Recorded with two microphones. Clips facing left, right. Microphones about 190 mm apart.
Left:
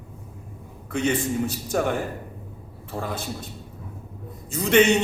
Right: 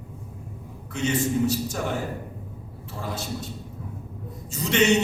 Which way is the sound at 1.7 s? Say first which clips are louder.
Left 6 dB; 55° left (ahead or behind).